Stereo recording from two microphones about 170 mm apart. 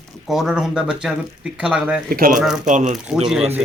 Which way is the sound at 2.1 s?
60° right (ahead or behind).